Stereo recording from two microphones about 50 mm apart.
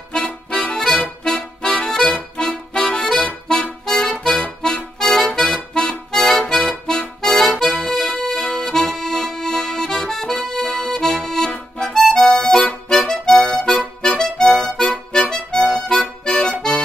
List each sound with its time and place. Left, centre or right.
0.2 s music: left; by 4.4 s centre
4.4 s accordion: centre
5.3 s music: centre
16.0 s music: left